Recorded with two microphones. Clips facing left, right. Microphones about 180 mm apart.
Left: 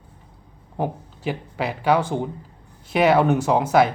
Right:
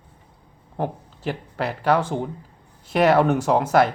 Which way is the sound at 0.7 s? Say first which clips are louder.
Left 1 dB; 5° left (ahead or behind).